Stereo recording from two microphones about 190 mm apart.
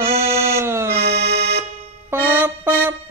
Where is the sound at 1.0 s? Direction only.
55° right (ahead or behind).